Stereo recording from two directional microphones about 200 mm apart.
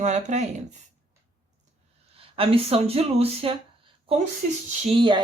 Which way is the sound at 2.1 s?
30° right (ahead or behind).